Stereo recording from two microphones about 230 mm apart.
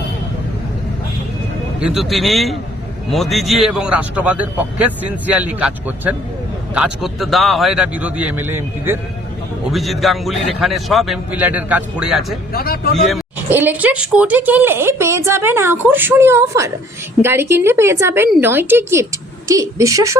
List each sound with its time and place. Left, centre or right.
1.8 s a man's voice: centre
12.5 s speech: left
13.1 s a woman's voice: centre